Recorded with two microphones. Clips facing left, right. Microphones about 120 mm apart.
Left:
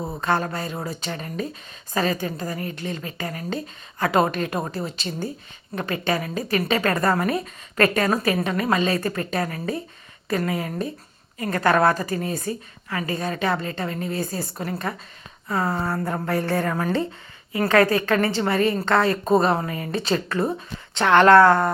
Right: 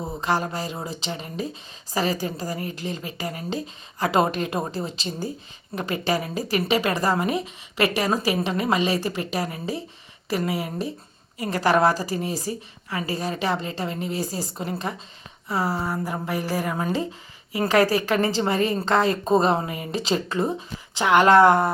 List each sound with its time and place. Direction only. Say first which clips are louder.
0.2 s a woman's voice: left 1 dB; 30° right (ahead or behind)
15.8 s speech: left 2 dB; centre (ahead or behind)
16.6 s a woman's voice: left 2 dB; 20° right (ahead or behind)